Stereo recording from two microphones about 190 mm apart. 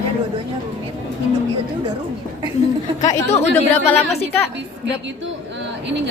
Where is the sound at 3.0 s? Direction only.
35° left (ahead or behind).